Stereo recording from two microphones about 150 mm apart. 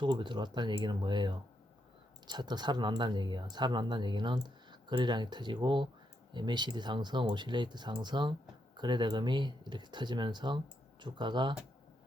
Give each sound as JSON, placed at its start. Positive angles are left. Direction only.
{"t": 0.0, "sound": "speech", "side_deg": -30}